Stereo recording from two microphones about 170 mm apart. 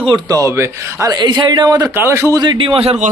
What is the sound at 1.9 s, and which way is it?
A man's voice, 15° right (ahead or behind).